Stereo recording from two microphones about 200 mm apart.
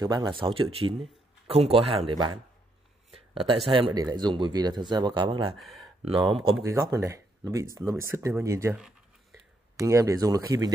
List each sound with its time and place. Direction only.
0.0 s speech: 20° right (ahead or behind)
3.1 s a sound: 30° right (ahead or behind)
3.6 s speech: 25° right (ahead or behind)
5.6 s speech: centre (ahead or behind)
6.0 s speech: 30° right (ahead or behind)
6.6 s speech: 15° right (ahead or behind)